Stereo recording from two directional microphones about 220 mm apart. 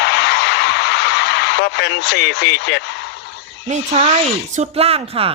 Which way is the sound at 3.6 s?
30° right (ahead or behind).